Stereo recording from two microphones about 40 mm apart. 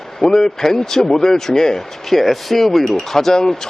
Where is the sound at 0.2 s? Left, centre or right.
Centre.